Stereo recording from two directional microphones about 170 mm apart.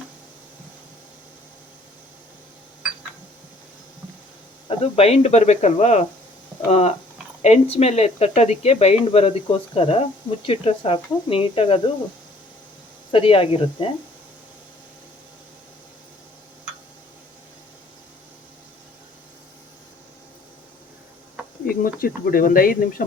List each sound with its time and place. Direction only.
4.8 s speech: 35° left (ahead or behind)
13.1 s speech: 30° left (ahead or behind)
21.9 s speech: 60° left (ahead or behind)